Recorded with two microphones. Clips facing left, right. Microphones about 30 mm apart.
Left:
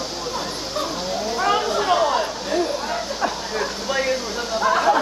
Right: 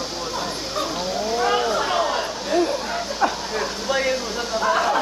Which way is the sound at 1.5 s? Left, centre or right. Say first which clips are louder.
Left 4 dB; centre.